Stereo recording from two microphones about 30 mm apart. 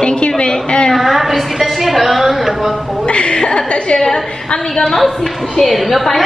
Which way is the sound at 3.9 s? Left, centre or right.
Centre.